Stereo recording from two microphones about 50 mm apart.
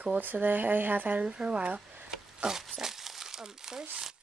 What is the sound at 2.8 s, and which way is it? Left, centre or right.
Crumpling, centre.